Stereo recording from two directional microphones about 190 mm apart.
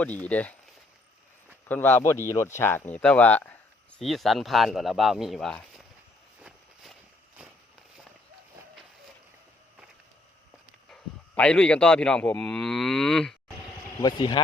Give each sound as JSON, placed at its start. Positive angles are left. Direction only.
{"t": 0.0, "sound": "speech", "side_deg": 10}
{"t": 1.6, "sound": "speech", "side_deg": 10}
{"t": 10.8, "sound": "speech", "side_deg": 5}
{"t": 14.0, "sound": "speech", "side_deg": 25}